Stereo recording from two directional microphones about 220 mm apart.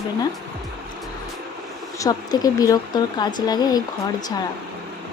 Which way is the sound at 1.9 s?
15° left (ahead or behind).